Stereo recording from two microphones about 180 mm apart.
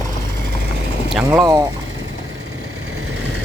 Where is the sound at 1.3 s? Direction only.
15° right (ahead or behind).